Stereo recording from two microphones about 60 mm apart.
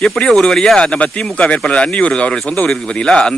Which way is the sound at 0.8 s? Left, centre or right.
Centre.